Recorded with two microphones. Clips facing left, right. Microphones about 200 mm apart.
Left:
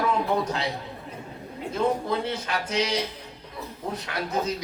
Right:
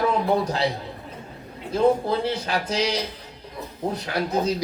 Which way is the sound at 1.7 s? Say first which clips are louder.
Right 5 dB; 35° right (ahead or behind).